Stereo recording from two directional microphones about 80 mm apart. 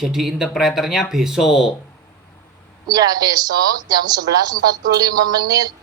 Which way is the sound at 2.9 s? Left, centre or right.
Right.